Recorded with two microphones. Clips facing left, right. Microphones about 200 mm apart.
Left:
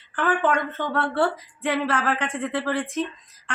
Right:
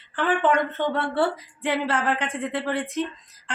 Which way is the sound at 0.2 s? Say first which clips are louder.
Right 1 dB; 20° right (ahead or behind).